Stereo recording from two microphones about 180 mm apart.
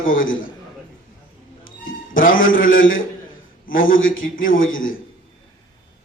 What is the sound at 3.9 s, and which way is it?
Speech, 90° left.